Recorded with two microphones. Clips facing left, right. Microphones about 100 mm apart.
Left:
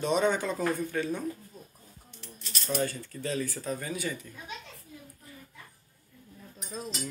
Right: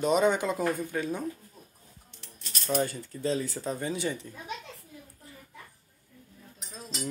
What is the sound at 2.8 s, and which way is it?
Speech, 20° right (ahead or behind).